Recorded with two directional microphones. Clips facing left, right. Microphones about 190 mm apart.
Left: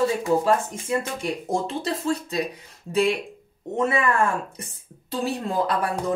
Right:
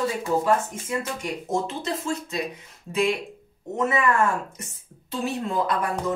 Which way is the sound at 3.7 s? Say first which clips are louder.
Even; 30° left (ahead or behind).